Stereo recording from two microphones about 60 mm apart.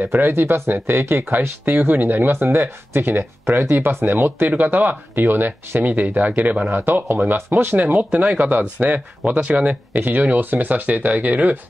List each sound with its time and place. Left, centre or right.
0.0 s speech: right
6.8 s speech: right